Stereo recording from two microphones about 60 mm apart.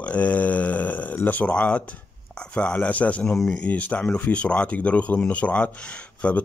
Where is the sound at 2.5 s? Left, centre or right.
Left.